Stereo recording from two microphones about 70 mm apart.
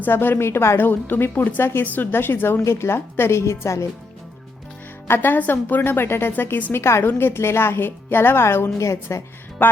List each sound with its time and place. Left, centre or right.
0.0 s a woman's voice: left
5.0 s a woman's voice: left